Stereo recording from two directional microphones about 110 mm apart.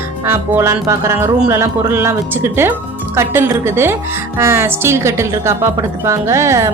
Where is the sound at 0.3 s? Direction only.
20° right (ahead or behind).